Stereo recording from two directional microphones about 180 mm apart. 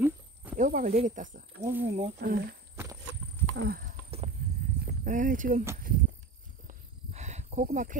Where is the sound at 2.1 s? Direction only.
60° right (ahead or behind).